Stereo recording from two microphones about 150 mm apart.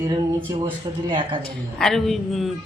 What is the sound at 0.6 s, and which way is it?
Speech, 30° right (ahead or behind).